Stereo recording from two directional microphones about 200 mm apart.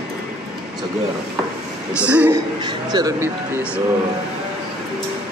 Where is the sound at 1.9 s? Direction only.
5° right (ahead or behind).